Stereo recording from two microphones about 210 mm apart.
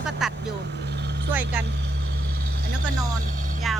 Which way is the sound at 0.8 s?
55° right (ahead or behind).